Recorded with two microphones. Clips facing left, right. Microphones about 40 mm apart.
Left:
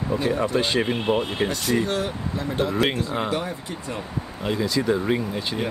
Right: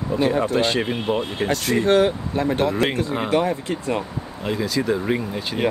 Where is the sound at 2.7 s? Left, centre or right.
Centre.